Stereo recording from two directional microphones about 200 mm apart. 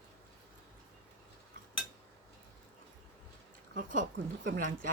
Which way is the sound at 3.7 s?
40° right (ahead or behind).